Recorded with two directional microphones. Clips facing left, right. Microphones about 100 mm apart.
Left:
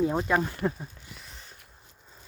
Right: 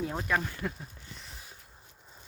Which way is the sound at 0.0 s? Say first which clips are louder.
Left 6 dB; 20° left (ahead or behind).